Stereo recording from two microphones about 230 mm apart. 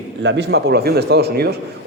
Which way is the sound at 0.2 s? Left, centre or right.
Right.